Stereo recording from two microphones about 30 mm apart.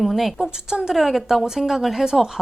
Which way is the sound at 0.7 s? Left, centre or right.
Right.